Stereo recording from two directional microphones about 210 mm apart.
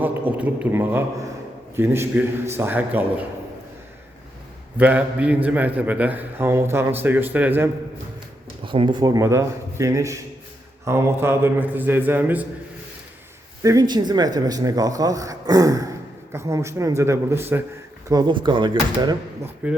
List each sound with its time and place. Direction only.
0.0 s a man's voice: 10° right (ahead or behind)
4.8 s a man's voice: 5° right (ahead or behind)
8.6 s a man's voice: 25° right (ahead or behind); by 12.5 s 10° right (ahead or behind)
13.6 s a man's voice: 15° right (ahead or behind)
19.6 s a man's voice: 5° right (ahead or behind)